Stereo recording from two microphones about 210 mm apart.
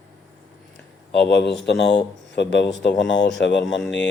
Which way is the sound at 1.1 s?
55° left (ahead or behind).